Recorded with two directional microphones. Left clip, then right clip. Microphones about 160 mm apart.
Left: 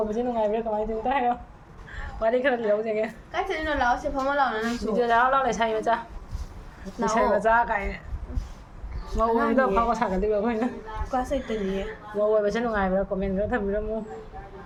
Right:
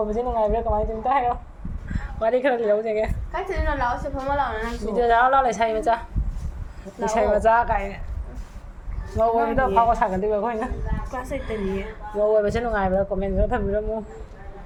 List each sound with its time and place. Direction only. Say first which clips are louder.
0.1 s speech: right 3 dB; 25° right (ahead or behind)
3.3 s a woman's voice: left 1 dB; 5° left (ahead or behind)
4.9 s speech: right 3 dB; 25° right (ahead or behind)
7.1 s speech: right 3 dB; 30° right (ahead or behind)
9.1 s speech: right 2 dB; 10° right (ahead or behind)
11.1 s a woman's voice: left 5 dB; 10° left (ahead or behind)
11.8 s speech: right 5 dB; 25° right (ahead or behind)